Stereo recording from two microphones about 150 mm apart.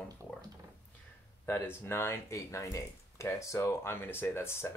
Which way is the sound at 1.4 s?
15° left (ahead or behind).